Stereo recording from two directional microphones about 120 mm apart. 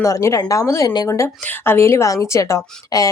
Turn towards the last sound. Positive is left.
turn(degrees=25)  # may be behind; listen again after turning